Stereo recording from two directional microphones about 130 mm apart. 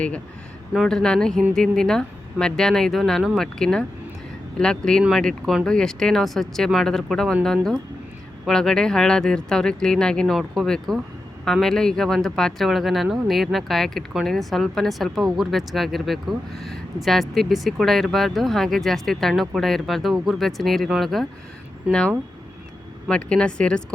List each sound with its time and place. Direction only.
0.7 s speech: centre (ahead or behind)
21.9 s speech: 10° right (ahead or behind)
23.0 s speech: 5° left (ahead or behind)